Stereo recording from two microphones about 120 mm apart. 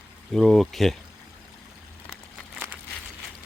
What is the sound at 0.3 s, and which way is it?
Speech, centre (ahead or behind).